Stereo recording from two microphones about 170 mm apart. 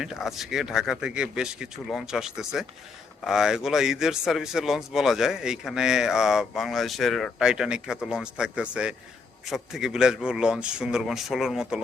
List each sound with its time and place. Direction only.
0.0 s a man's voice: centre (ahead or behind)